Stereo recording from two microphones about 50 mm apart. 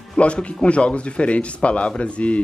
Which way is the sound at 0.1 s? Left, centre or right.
Centre.